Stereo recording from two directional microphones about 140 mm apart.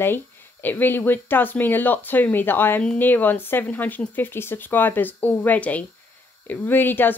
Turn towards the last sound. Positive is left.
turn(degrees=15)  # may be behind; listen again after turning